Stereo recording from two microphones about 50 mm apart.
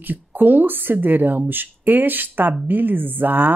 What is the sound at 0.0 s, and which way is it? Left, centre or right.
Speech, right.